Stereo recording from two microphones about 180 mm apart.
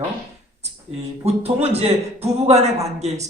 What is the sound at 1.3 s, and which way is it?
Speech, 35° right (ahead or behind).